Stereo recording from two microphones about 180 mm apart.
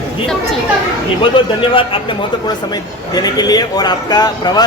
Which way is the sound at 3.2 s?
20° left (ahead or behind).